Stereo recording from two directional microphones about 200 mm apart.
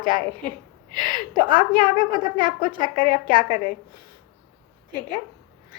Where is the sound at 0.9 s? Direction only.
20° right (ahead or behind).